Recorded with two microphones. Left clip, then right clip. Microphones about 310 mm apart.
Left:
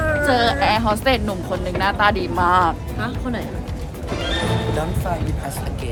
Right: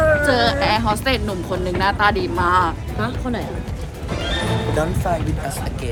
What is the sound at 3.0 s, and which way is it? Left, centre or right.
Speech, centre.